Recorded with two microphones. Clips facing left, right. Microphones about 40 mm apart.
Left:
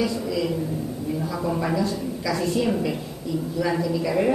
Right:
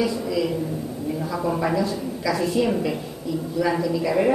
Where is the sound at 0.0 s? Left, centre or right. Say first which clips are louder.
Right 1 dB; centre.